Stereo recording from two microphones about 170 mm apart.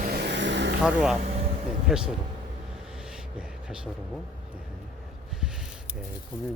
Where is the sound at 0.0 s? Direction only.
70° right (ahead or behind); by 0.8 s 90° right.